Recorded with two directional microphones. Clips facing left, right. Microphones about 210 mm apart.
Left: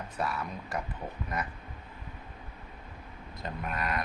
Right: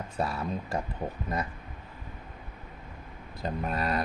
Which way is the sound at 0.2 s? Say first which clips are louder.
Right 3 dB; 25° right (ahead or behind).